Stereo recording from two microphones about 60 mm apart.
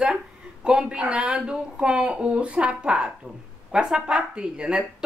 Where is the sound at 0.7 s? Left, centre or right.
Centre.